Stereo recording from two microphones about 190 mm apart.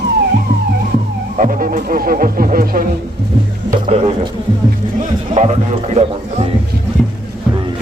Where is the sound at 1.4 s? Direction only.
45° right (ahead or behind).